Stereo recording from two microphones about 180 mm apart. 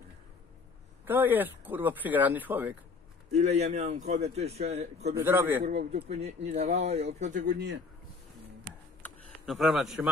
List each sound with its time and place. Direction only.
1.0 s speech: 10° right (ahead or behind)
3.3 s a man's voice: 35° right (ahead or behind)
5.1 s speech: 15° right (ahead or behind)
5.6 s a man's voice: 40° right (ahead or behind)
9.5 s speech: centre (ahead or behind)